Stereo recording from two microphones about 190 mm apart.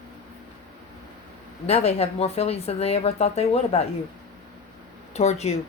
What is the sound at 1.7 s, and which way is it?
A woman's voice, 35° left (ahead or behind).